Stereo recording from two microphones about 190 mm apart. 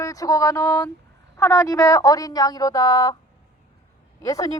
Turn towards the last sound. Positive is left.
turn(degrees=15)  # may be behind; listen again after turning